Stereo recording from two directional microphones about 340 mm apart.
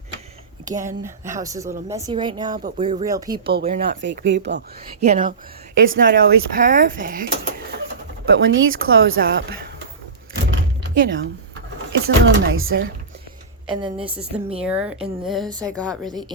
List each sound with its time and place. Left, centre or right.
0.7 s speech: right
1.0 s speech: centre
3.4 s speech: right
8.4 s speech: right
10.8 s a sound: right
11.9 s speech: right
13.7 s speech: centre
14.6 s speech: centre